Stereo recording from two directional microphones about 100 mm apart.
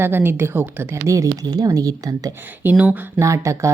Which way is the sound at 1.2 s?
45° right (ahead or behind).